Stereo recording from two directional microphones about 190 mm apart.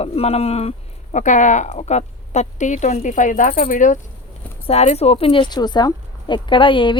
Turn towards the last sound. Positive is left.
turn(degrees=25)  # may be behind; listen again after turning